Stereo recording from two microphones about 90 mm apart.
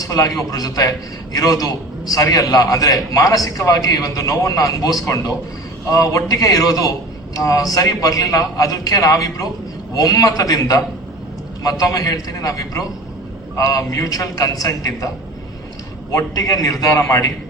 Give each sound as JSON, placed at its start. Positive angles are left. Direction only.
{"t": 0.0, "sound": "a man's voice", "side_deg": 40}
{"t": 16.1, "sound": "a man's voice", "side_deg": 40}